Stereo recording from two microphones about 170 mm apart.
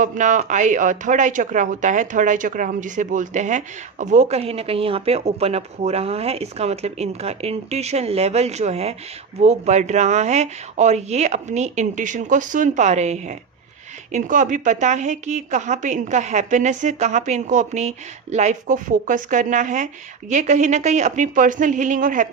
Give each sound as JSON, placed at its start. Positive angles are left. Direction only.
{"t": 0.0, "sound": "a woman's voice", "side_deg": -45}